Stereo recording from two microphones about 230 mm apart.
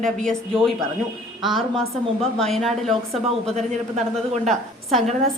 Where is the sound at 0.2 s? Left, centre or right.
Centre.